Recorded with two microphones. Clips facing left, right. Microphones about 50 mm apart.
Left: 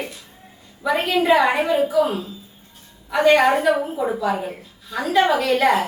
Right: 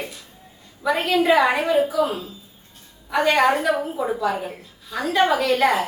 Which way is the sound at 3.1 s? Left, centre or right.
Centre.